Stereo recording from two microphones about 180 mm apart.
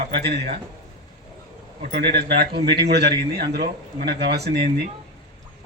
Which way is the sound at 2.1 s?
65° right (ahead or behind).